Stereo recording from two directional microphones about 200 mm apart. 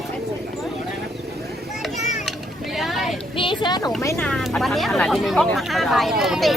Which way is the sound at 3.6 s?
20° left (ahead or behind).